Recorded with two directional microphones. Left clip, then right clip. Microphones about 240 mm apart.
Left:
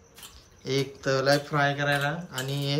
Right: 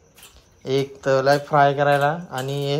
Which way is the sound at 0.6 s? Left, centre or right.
Centre.